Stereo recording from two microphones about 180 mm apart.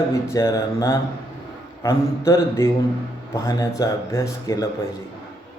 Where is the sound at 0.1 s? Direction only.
15° left (ahead or behind).